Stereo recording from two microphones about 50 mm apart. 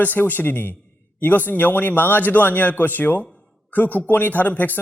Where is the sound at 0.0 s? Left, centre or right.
Left.